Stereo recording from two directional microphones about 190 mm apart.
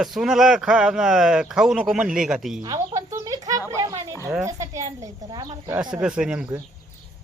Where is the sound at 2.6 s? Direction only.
20° right (ahead or behind).